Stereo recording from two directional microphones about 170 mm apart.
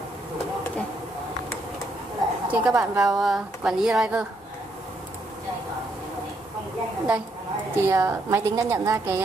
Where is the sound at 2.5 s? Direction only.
5° right (ahead or behind).